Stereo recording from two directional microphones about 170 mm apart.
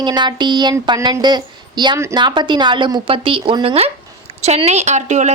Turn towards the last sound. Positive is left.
turn(degrees=-45)  # may be behind; listen again after turning